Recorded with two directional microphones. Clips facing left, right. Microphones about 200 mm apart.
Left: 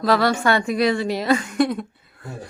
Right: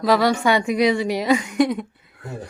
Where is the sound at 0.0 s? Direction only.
15° right (ahead or behind).